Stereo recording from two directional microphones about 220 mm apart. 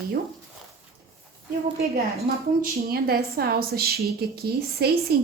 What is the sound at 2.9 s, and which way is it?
A woman's voice, 45° right (ahead or behind).